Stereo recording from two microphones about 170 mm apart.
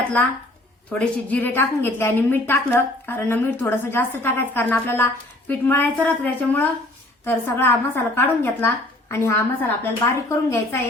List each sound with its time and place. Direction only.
0.9 s a woman's voice: 10° left (ahead or behind)